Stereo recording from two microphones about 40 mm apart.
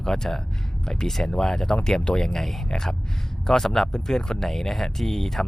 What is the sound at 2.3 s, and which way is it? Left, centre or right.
Speech, centre.